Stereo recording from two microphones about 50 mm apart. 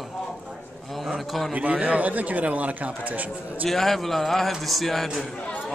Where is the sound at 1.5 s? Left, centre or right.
Right.